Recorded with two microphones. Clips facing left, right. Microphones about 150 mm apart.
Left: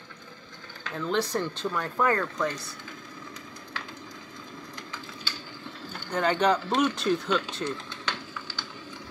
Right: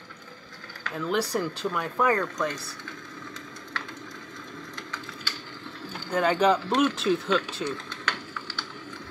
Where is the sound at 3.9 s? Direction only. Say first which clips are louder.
Right 2 dB; 20° left (ahead or behind).